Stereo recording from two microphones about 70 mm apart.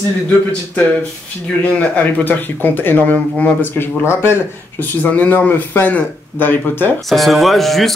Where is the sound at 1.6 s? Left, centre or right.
Left.